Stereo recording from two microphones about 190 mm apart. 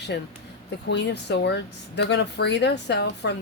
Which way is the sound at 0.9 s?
65° left (ahead or behind).